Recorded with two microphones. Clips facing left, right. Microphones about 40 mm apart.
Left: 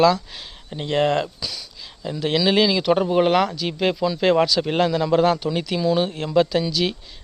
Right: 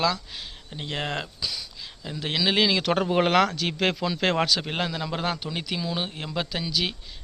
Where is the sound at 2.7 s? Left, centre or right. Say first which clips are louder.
Left 5 dB; right.